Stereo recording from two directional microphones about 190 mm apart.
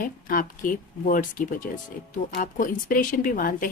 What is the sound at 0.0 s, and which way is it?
A woman's voice, 45° left (ahead or behind).